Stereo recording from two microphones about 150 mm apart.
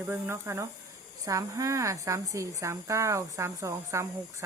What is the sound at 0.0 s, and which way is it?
A woman's voice, 15° right (ahead or behind).